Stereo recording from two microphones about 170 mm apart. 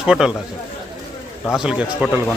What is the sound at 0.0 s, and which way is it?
Speech, 5° right (ahead or behind).